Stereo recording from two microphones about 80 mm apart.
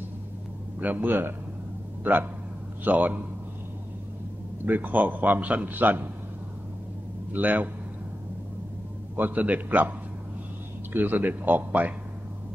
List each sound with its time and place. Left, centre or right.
0.7 s a man's voice: right
4.6 s a man's voice: right
7.3 s a man's voice: right
9.1 s a man's voice: right